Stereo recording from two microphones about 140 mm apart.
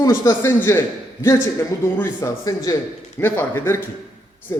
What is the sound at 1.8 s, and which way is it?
A man's voice, 15° left (ahead or behind).